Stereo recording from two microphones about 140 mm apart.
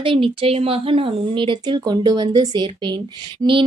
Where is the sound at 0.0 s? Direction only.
40° right (ahead or behind).